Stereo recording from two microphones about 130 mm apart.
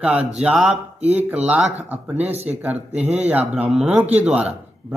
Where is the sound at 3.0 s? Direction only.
55° right (ahead or behind).